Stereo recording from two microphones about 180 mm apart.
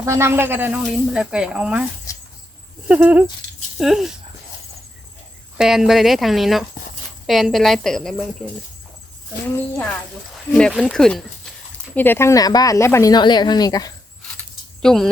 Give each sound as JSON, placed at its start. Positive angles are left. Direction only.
{"t": 0.0, "sound": "speech", "side_deg": -15}
{"t": 2.1, "sound": "a sound", "side_deg": 15}
{"t": 2.8, "sound": "speech", "side_deg": -10}
{"t": 5.5, "sound": "speech", "side_deg": 0}
{"t": 9.7, "sound": "speech", "side_deg": 5}
{"t": 14.8, "sound": "speech", "side_deg": 0}